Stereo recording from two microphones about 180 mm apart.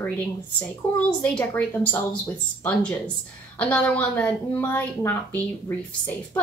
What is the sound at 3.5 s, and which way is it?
A woman's voice, 5° left (ahead or behind).